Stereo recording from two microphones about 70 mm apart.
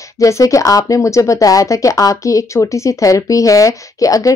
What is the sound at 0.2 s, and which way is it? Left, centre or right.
Speech, left.